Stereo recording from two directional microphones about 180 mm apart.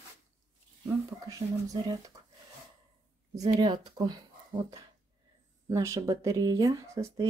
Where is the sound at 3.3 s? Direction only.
20° right (ahead or behind).